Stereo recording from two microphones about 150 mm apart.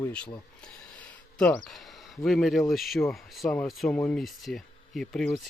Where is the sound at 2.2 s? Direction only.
Centre (ahead or behind).